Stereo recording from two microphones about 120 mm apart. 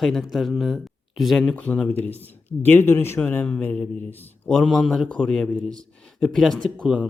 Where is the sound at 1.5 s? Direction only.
10° left (ahead or behind).